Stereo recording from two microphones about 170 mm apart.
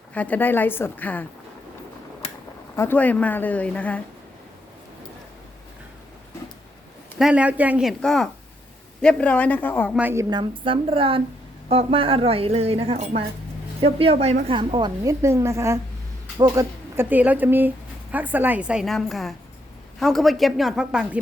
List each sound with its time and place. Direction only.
0.1 s speech: 10° left (ahead or behind)
2.7 s speech: 10° left (ahead or behind)
7.2 s a woman's voice: 5° right (ahead or behind); by 9.9 s 10° left (ahead or behind)
9.9 s speech: 10° right (ahead or behind)
10.2 s a woman's voice: 25° right (ahead or behind); by 21.2 s 5° right (ahead or behind)